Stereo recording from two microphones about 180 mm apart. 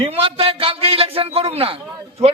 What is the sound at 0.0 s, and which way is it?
A man's voice, 35° right (ahead or behind).